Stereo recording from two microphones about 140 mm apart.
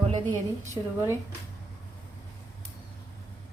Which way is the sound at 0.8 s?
25° right (ahead or behind).